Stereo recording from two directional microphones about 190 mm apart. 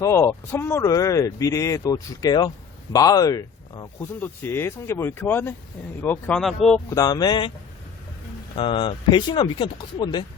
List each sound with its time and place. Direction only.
0.0 s speech: 15° left (ahead or behind)
6.9 s speech: 20° left (ahead or behind)
8.5 s speech: 25° left (ahead or behind)